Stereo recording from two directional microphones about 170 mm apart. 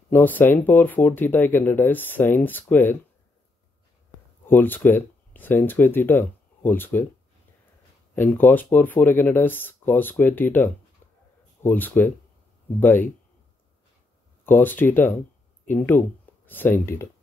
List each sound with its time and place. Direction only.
0.1 s speech: 10° left (ahead or behind)
4.5 s speech: 10° left (ahead or behind)
8.1 s speech: 10° left (ahead or behind)
14.4 s speech: 10° left (ahead or behind)